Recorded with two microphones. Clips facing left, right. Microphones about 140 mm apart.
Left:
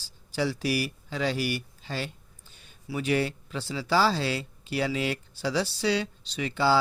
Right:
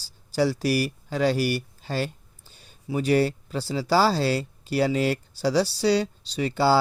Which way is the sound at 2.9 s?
35° right (ahead or behind).